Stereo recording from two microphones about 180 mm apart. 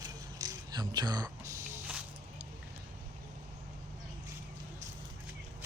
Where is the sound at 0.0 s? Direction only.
20° right (ahead or behind).